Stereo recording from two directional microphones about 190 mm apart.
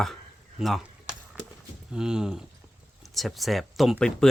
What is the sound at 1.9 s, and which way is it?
Speech, 5° right (ahead or behind).